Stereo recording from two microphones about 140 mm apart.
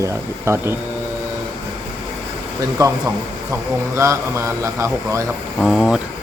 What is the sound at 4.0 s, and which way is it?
A man's voice, 20° right (ahead or behind).